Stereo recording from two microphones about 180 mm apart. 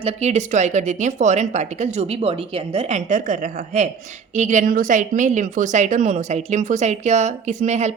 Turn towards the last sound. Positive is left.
turn(degrees=-40)  # may be behind; listen again after turning